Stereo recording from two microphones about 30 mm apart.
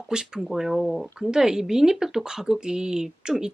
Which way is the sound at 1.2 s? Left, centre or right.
Right.